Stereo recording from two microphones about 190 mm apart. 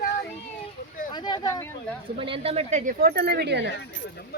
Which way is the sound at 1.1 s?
20° left (ahead or behind).